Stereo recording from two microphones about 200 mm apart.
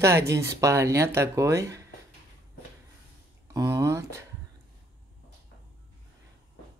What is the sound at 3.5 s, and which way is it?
Speech, 15° right (ahead or behind).